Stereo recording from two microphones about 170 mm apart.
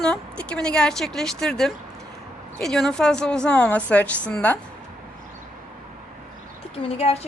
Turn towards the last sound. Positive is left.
turn(degrees=35)  # may be behind; listen again after turning